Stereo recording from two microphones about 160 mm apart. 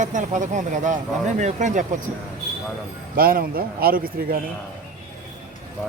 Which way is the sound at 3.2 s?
65° right (ahead or behind).